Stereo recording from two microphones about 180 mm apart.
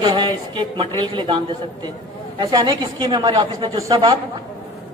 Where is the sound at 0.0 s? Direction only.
25° right (ahead or behind).